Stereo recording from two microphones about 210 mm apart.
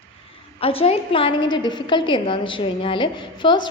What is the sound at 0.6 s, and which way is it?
A woman's voice, 25° left (ahead or behind).